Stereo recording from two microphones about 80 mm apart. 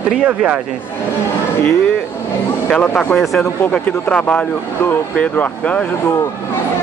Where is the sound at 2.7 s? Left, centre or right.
Centre.